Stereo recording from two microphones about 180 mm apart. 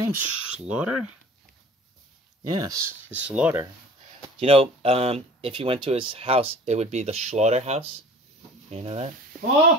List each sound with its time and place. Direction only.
0.1 s speech: 5° right (ahead or behind)
2.5 s speech: 20° right (ahead or behind)
4.4 s speech: 30° right (ahead or behind)